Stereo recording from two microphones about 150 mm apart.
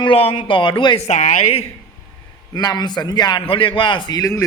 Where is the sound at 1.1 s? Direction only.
50° left (ahead or behind).